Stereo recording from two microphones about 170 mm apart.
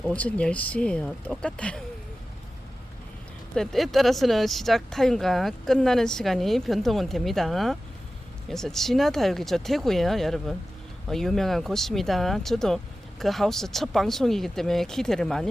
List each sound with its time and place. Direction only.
0.0 s speech: 5° left (ahead or behind)
3.5 s speech: 5° left (ahead or behind)